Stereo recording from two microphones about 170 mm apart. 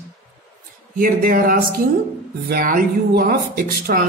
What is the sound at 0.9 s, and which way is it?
A woman's voice, 60° right (ahead or behind).